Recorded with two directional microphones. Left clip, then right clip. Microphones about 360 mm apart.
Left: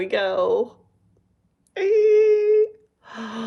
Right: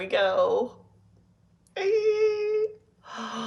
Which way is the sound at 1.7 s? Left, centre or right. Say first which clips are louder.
Left 7 dB; left.